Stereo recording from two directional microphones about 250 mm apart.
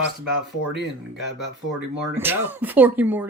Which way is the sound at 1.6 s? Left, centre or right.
Centre.